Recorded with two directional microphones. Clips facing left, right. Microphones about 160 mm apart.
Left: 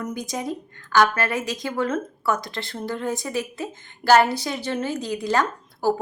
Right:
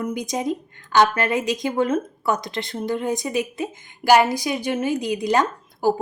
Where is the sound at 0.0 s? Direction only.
20° right (ahead or behind).